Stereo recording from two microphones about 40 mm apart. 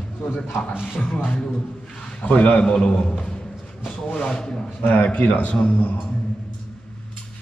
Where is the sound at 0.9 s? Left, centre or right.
Left.